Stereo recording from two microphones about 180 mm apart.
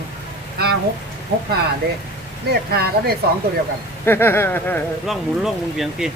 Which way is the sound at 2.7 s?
60° right (ahead or behind).